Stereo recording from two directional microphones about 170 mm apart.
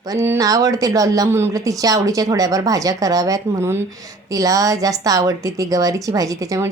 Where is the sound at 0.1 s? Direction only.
20° right (ahead or behind).